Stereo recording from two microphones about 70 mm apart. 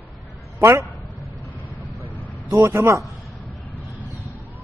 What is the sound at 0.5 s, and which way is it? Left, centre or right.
Speech, right.